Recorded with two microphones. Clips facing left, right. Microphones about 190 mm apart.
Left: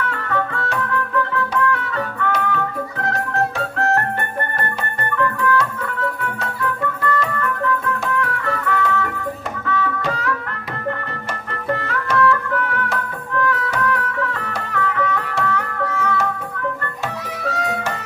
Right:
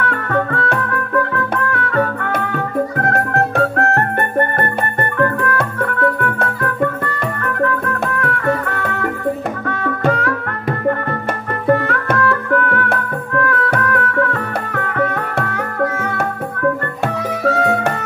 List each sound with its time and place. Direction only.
0.1 s music: 60° right (ahead or behind)
11.6 s music: 55° right (ahead or behind)
17.5 s music: 60° right (ahead or behind)